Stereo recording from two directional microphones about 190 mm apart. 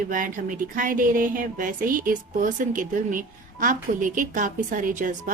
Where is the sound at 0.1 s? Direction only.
45° right (ahead or behind).